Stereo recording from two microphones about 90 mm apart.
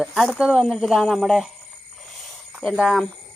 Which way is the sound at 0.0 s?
Centre (ahead or behind).